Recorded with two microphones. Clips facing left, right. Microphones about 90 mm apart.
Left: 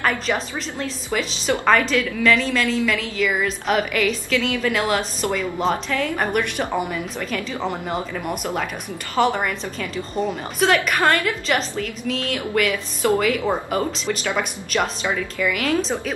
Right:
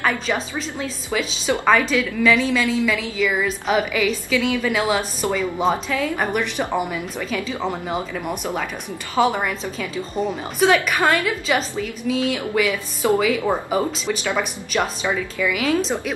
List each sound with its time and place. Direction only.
0.3 s a woman's voice: 5° right (ahead or behind)
13.1 s a woman's voice: 15° right (ahead or behind)